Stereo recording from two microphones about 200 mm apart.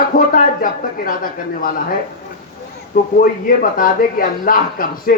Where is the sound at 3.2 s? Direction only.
45° left (ahead or behind).